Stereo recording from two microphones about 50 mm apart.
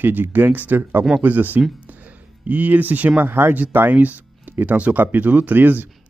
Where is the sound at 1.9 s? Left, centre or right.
Right.